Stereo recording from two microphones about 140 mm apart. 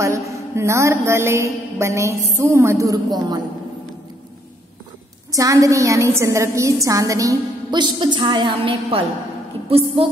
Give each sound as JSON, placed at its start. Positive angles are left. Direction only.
{"t": 0.0, "sound": "a woman's voice", "side_deg": -20}
{"t": 5.3, "sound": "a woman's voice", "side_deg": -25}